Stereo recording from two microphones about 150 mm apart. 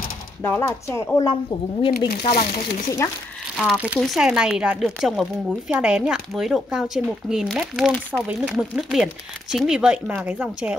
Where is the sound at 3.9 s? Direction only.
Centre (ahead or behind).